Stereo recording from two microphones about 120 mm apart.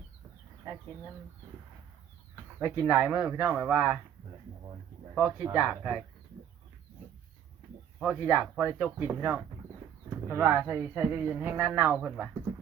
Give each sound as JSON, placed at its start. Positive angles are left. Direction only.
{"t": 0.7, "sound": "speech", "side_deg": -30}
{"t": 2.3, "sound": "speech", "side_deg": -25}
{"t": 5.4, "sound": "speech", "side_deg": -15}
{"t": 7.9, "sound": "speech", "side_deg": -10}
{"t": 10.1, "sound": "a sound", "side_deg": -25}
{"t": 10.6, "sound": "speech", "side_deg": -20}